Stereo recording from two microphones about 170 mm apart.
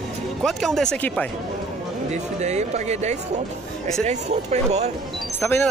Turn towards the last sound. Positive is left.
turn(degrees=10)  # may be behind; listen again after turning